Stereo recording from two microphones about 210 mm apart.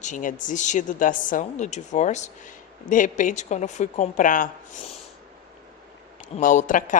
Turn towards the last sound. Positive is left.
turn(degrees=40)  # may be behind; listen again after turning